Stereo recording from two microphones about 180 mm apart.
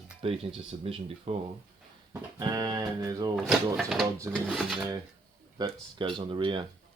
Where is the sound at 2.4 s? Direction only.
20° right (ahead or behind).